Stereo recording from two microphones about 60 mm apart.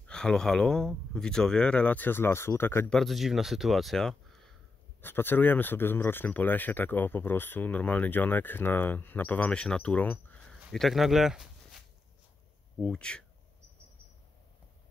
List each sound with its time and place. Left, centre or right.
0.0 s speech: centre; by 2.9 s left
3.1 s speech: centre
5.0 s speech: left; by 9.9 s centre
9.9 s speech: left
10.7 s speech: centre
12.8 s speech: centre